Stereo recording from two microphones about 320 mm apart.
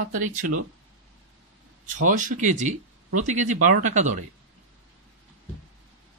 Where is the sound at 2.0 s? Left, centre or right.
Right.